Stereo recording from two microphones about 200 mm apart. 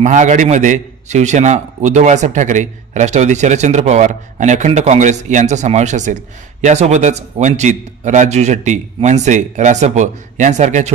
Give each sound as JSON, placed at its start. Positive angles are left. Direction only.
{"t": 0.0, "sound": "a man's voice", "side_deg": -40}